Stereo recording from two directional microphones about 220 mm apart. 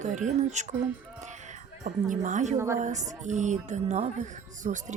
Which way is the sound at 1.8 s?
35° right (ahead or behind).